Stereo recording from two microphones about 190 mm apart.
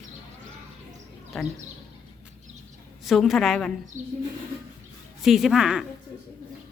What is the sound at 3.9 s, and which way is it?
Speech, 40° right (ahead or behind).